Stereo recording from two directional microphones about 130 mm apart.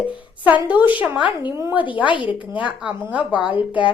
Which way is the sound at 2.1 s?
40° left (ahead or behind).